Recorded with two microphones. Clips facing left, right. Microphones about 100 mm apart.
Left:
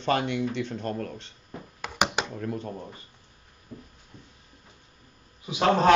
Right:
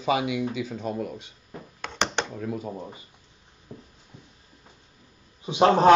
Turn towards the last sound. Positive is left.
turn(degrees=-25)  # may be behind; listen again after turning